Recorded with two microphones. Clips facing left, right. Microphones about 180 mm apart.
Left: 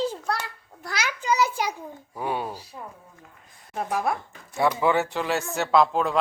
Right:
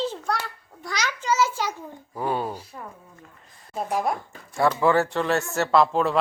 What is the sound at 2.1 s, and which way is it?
Speech, centre (ahead or behind).